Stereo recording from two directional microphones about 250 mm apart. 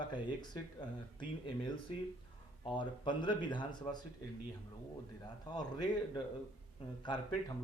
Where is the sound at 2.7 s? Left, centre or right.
Centre.